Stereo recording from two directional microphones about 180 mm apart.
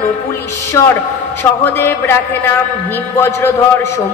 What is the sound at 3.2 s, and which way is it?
Speech, 15° left (ahead or behind).